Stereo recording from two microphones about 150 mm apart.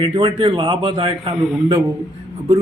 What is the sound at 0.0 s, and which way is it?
Speech, 30° right (ahead or behind).